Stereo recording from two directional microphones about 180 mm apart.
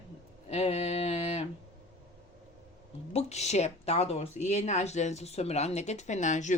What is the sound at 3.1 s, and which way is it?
Speech, 35° left (ahead or behind).